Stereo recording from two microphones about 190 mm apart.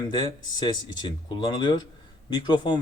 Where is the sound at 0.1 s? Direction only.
20° left (ahead or behind).